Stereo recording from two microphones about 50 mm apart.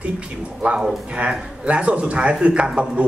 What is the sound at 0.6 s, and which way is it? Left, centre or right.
Speech, right.